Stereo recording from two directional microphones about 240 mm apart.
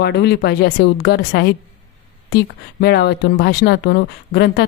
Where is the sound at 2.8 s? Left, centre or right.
Left.